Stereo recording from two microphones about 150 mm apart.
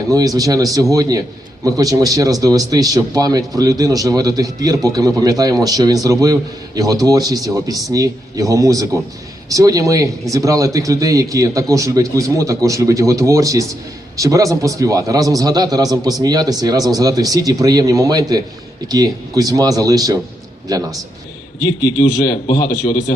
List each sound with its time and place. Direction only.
0.1 s speech: 25° right (ahead or behind)
22.5 s a man's voice: 25° left (ahead or behind)